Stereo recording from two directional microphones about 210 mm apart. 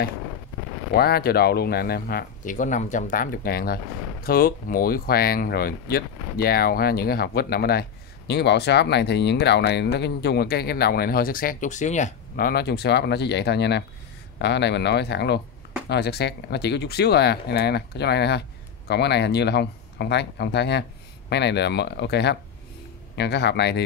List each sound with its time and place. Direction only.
0.9 s speech: 50° left (ahead or behind)